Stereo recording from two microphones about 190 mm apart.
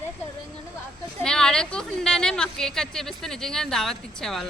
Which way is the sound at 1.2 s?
5° left (ahead or behind).